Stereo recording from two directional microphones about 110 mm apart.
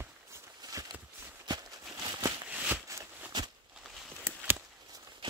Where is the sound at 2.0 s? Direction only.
35° right (ahead or behind).